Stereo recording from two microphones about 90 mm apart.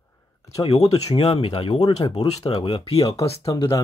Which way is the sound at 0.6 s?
90° left.